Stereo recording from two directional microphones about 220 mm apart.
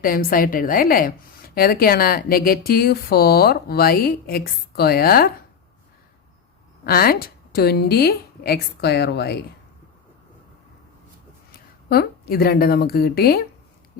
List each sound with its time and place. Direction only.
0.0 s a woman's voice: 40° left (ahead or behind)
6.8 s a woman's voice: 45° left (ahead or behind)
11.9 s a woman's voice: 45° left (ahead or behind)